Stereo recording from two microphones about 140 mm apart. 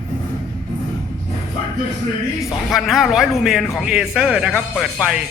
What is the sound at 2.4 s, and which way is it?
A man's voice, centre (ahead or behind).